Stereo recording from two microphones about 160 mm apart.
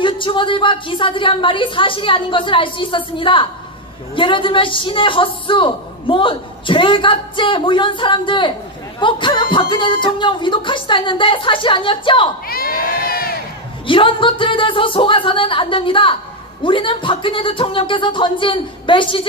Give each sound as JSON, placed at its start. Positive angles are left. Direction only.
{"t": 0.0, "sound": "a woman's voice", "side_deg": 30}
{"t": 12.4, "sound": "crowd", "side_deg": 70}
{"t": 13.8, "sound": "a woman's voice", "side_deg": 30}